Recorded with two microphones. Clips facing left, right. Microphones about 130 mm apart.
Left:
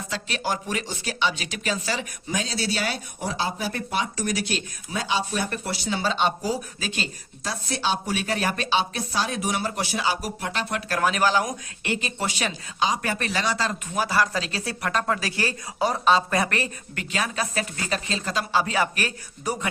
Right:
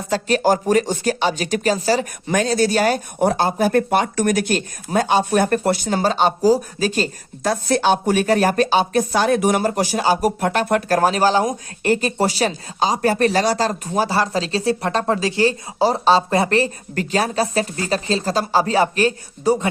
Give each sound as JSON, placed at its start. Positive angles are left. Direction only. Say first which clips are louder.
{"t": 0.1, "sound": "speech", "louder": "right 12 dB", "side_deg": -45}
{"t": 2.2, "sound": "speech", "louder": "right 10 dB", "side_deg": -60}
{"t": 11.8, "sound": "speech", "louder": "right 11 dB", "side_deg": -40}